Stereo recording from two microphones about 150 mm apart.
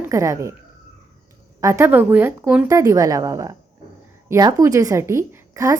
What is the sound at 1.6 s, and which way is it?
A woman's voice, 15° right (ahead or behind).